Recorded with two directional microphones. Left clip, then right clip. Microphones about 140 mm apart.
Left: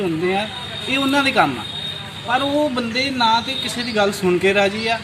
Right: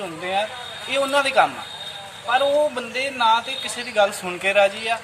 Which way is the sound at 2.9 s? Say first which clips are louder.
Left 2 dB; 5° right (ahead or behind).